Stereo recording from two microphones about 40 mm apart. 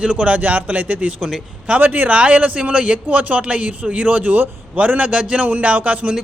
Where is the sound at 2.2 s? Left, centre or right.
Right.